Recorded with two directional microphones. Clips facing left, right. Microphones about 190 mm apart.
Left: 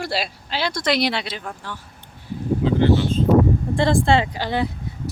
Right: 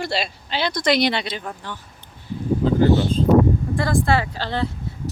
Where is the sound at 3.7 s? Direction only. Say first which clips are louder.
Left 5 dB; 25° left (ahead or behind).